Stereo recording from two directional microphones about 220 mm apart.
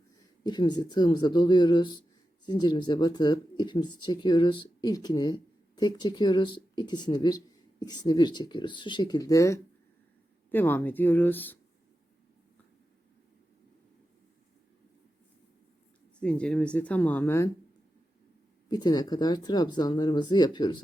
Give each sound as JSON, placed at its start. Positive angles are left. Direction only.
{"t": 0.4, "sound": "speech", "side_deg": 20}
{"t": 16.2, "sound": "speech", "side_deg": 5}
{"t": 18.7, "sound": "speech", "side_deg": 20}